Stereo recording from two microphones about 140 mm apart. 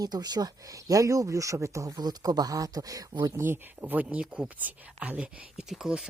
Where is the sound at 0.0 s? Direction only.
30° right (ahead or behind).